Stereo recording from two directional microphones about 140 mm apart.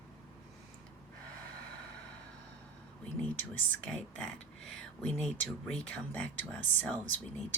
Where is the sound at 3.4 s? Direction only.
15° left (ahead or behind).